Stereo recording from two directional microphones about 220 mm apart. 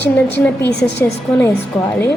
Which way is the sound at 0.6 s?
10° left (ahead or behind).